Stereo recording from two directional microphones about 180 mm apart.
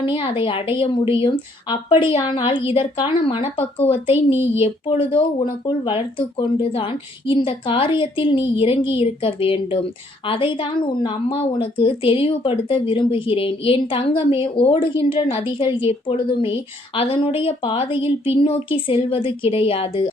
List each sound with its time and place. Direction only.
0.1 s a woman's voice: 30° left (ahead or behind)
3.6 s speech: 10° left (ahead or behind)
3.9 s a woman's voice: 35° left (ahead or behind)